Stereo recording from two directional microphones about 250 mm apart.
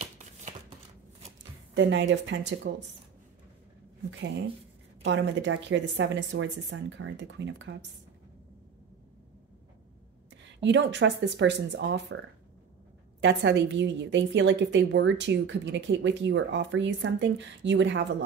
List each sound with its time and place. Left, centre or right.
0.0 s a sound: right
1.8 s a woman's voice: right
5.0 s a woman's voice: right
10.3 s a woman's voice: right
13.2 s a woman's voice: right